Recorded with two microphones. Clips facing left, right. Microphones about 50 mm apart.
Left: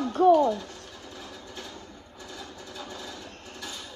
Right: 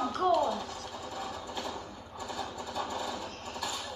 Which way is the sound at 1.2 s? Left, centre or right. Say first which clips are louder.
Right 4 dB; right.